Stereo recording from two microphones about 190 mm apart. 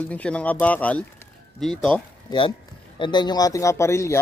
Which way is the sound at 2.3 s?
20° left (ahead or behind).